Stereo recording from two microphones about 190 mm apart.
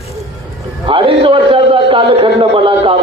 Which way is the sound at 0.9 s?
30° right (ahead or behind).